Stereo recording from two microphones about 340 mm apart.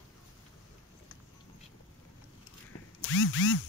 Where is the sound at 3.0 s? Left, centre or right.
Left.